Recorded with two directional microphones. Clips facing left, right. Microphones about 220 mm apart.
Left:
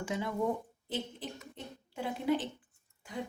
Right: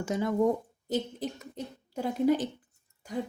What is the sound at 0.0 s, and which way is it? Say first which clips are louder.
A woman's voice: right 7 dB; 45° right (ahead or behind).